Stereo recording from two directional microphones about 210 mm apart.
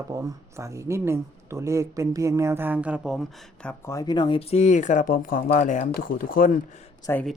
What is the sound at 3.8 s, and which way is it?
Speech, 15° left (ahead or behind).